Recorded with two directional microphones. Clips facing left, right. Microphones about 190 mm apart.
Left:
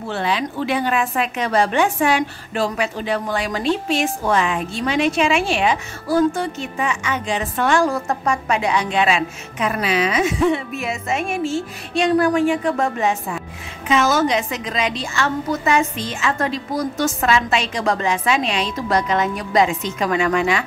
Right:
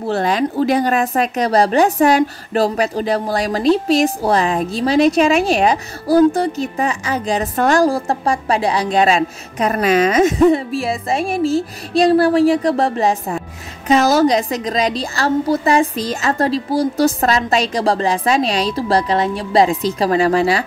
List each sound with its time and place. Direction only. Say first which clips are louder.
0.0 s speech: right 5 dB; 40° right (ahead or behind)